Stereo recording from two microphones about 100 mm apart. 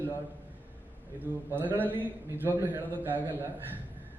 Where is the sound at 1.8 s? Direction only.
20° right (ahead or behind).